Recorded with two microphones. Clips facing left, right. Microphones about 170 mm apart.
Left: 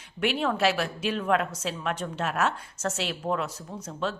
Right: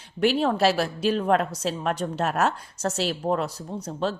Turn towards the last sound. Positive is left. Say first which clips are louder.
# right 4 dB
turn(degrees=-35)  # may be behind; listen again after turning